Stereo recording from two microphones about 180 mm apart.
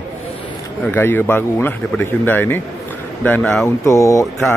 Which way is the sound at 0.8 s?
10° left (ahead or behind).